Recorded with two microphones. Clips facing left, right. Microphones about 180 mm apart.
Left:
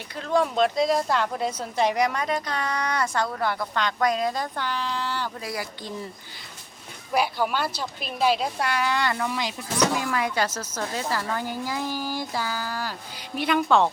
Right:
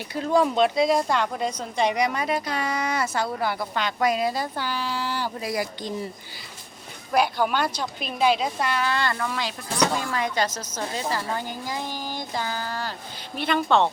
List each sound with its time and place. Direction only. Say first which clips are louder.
0.1 s a woman's voice: right 2 dB; 5° right (ahead or behind)
7.1 s a woman's voice: right 2 dB; 5° left (ahead or behind)
10.8 s speech: even; 15° right (ahead or behind)
11.9 s a sound: left 3 dB; 10° left (ahead or behind)
12.4 s a woman's voice: even; 10° left (ahead or behind)